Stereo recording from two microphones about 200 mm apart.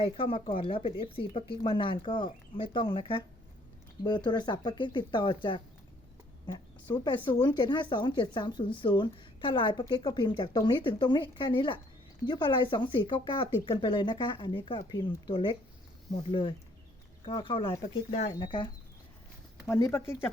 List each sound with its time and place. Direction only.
0.0 s speech: 25° left (ahead or behind)
19.6 s speech: 10° left (ahead or behind)